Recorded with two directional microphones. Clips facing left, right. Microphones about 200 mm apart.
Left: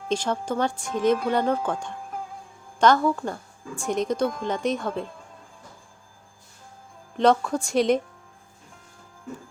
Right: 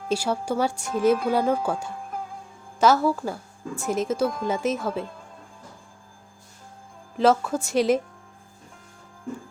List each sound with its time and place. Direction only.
0.1 s a woman's voice: 10° right (ahead or behind)
7.2 s a woman's voice: 5° right (ahead or behind)